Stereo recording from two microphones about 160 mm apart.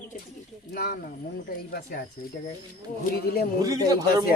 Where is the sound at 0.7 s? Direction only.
75° left (ahead or behind).